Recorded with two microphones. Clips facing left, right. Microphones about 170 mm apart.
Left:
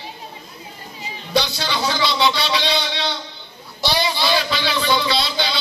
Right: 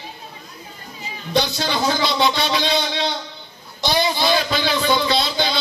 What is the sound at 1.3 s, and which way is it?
Speech, 50° right (ahead or behind).